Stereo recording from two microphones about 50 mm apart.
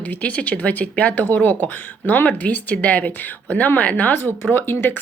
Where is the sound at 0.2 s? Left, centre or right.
Left.